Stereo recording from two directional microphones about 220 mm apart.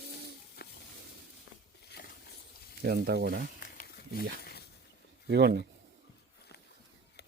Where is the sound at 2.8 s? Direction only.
45° right (ahead or behind).